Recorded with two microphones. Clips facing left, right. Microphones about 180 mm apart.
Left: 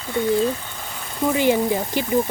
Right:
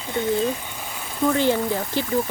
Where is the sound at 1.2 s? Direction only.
15° left (ahead or behind).